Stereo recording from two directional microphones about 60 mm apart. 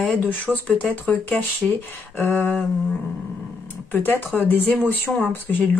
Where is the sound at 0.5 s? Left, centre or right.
Right.